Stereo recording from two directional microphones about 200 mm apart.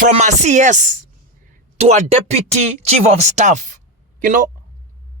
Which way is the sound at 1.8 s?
35° right (ahead or behind).